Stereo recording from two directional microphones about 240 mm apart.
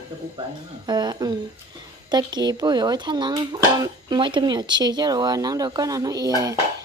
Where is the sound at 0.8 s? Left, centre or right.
Centre.